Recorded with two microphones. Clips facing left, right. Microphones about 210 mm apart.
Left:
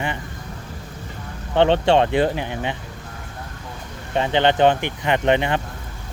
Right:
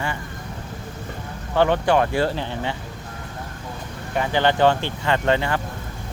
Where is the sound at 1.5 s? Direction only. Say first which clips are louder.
Left 2 dB; 25° left (ahead or behind).